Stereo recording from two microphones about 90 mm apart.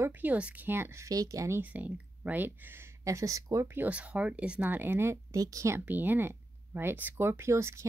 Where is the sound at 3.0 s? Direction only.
40° right (ahead or behind).